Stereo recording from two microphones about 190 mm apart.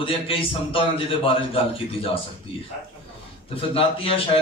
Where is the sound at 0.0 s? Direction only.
30° left (ahead or behind).